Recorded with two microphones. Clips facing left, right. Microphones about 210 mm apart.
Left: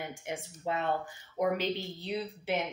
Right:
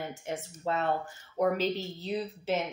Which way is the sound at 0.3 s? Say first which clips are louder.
Right 2 dB; 15° left (ahead or behind).